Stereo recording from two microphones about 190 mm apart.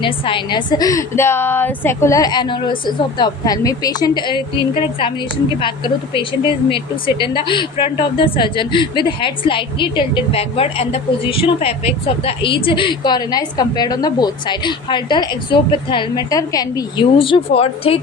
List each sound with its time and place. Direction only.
0.0 s a woman's voice: 25° left (ahead or behind)